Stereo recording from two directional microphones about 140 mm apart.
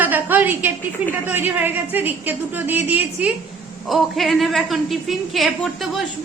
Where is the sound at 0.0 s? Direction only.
15° right (ahead or behind).